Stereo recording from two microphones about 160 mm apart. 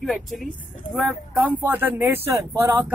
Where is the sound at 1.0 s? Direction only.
10° right (ahead or behind).